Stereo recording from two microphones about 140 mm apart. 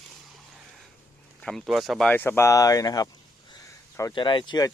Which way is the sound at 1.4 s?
5° left (ahead or behind).